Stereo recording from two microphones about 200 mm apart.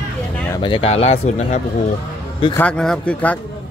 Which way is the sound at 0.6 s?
25° left (ahead or behind).